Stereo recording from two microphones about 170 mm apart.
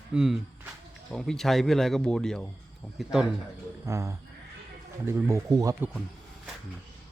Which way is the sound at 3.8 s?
15° right (ahead or behind).